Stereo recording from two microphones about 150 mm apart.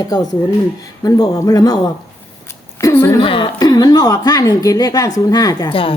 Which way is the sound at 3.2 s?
35° left (ahead or behind).